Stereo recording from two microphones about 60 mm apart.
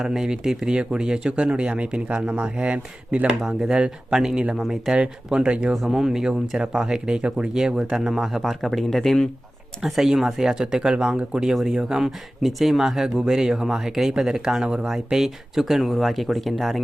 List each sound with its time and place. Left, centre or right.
0.0 s speech: centre
5.7 s speech: centre
9.8 s speech: centre